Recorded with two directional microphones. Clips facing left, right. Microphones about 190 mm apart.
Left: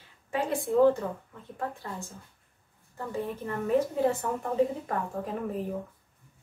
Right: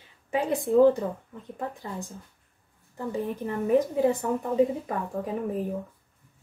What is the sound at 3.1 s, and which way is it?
A woman's voice, 15° right (ahead or behind).